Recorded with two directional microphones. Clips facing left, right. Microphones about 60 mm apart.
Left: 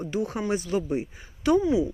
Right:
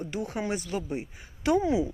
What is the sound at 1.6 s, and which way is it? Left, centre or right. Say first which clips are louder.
Speech: left 3 dB; right.